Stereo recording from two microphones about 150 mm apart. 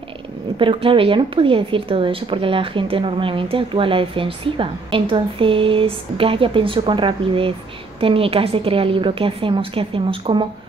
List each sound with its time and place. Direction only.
0.6 s a woman's voice: 35° right (ahead or behind)